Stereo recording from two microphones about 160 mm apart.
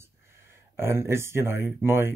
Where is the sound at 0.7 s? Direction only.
15° right (ahead or behind).